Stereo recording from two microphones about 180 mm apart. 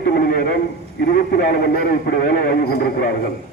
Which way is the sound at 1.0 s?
55° left (ahead or behind).